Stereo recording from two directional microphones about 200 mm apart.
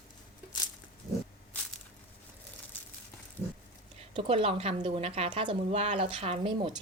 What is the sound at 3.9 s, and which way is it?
Speech, 30° right (ahead or behind).